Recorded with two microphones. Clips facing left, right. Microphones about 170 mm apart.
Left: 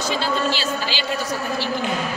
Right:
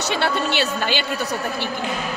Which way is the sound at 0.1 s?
65° right (ahead or behind).